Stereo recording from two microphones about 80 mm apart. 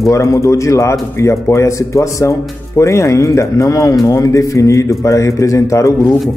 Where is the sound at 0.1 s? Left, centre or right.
Left.